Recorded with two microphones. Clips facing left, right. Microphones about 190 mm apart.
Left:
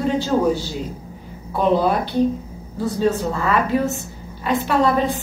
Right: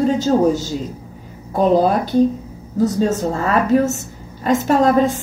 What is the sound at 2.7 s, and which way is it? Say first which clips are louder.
A woman's voice: right 3 dB; 40° right (ahead or behind).